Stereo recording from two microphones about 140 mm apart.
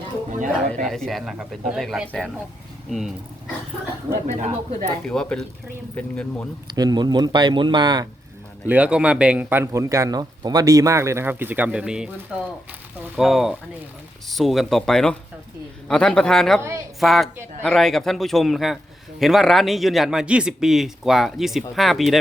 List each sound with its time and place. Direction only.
0.3 s speech: 65° right (ahead or behind)
0.9 s a man's voice: centre (ahead or behind)
4.4 s speech: 55° right (ahead or behind)
5.0 s a man's voice: 5° left (ahead or behind)
6.7 s speech: 30° right (ahead or behind)
8.6 s a man's voice: 10° right (ahead or behind)
16.6 s speech: 20° right (ahead or behind)
17.0 s a man's voice: centre (ahead or behind)